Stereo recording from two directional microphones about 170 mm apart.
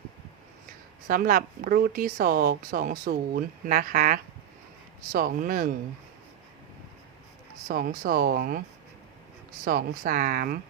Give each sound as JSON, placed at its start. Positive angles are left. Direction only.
{"t": 1.0, "sound": "speech", "side_deg": -55}
{"t": 7.7, "sound": "speech", "side_deg": -60}
{"t": 9.6, "sound": "speech", "side_deg": -60}